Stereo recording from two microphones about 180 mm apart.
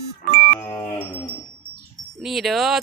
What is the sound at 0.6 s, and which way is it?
Cattle, 15° left (ahead or behind).